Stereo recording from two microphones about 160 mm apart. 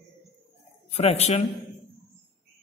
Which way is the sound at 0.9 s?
40° left (ahead or behind).